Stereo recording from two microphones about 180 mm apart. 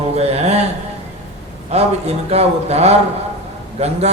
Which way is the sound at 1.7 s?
35° right (ahead or behind).